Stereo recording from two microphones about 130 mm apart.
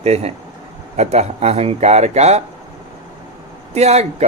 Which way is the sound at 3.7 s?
55° right (ahead or behind).